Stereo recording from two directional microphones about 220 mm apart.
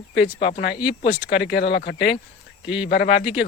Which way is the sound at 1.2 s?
50° left (ahead or behind).